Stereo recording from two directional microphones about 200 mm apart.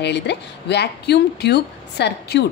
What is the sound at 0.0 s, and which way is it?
A woman's voice, 60° left (ahead or behind).